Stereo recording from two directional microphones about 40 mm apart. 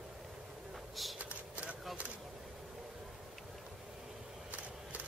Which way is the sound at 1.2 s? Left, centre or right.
Right.